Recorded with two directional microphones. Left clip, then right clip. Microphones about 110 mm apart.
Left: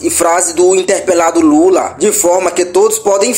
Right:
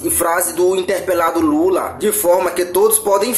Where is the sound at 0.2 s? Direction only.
40° left (ahead or behind).